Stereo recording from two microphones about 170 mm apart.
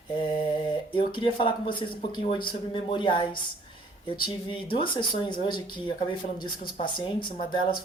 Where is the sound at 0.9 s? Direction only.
30° left (ahead or behind).